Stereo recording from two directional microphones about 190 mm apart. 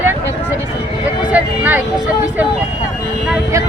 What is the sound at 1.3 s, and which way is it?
Speech, 10° right (ahead or behind).